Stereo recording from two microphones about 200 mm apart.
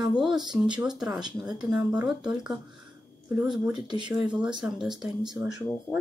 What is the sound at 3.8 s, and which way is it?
Speech, 20° right (ahead or behind).